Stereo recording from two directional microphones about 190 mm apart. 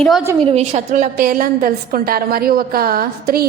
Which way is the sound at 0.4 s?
35° right (ahead or behind).